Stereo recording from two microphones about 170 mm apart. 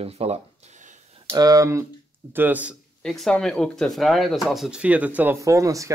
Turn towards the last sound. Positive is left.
turn(degrees=-20)  # may be behind; listen again after turning